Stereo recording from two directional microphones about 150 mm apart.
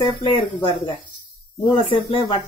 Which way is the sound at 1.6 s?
35° left (ahead or behind).